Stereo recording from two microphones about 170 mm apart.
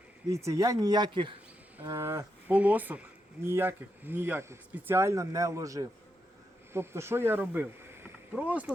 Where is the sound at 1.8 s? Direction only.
15° right (ahead or behind).